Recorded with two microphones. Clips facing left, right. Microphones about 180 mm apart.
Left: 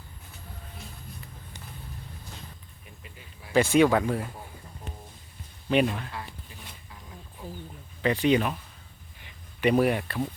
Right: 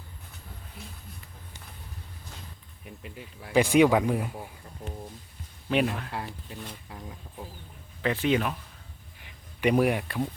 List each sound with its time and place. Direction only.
3.5 s speech: 15° right (ahead or behind)
5.7 s speech: centre (ahead or behind)
6.1 s speech: 65° right (ahead or behind)
8.0 s speech: centre (ahead or behind)